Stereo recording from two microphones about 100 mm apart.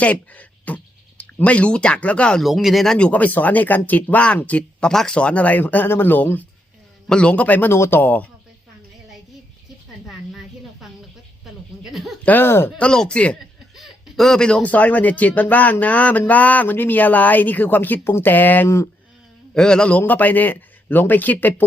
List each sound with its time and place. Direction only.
0.0 s speech: 15° left (ahead or behind)
2.4 s speech: centre (ahead or behind); by 8.3 s 15° left (ahead or behind)
10.1 s a sound: 5° right (ahead or behind)
11.8 s speech: centre (ahead or behind)
12.2 s speech: 20° left (ahead or behind)
12.8 s speech: 10° left (ahead or behind); by 18.9 s 25° left (ahead or behind)
19.5 s speech: 5° left (ahead or behind)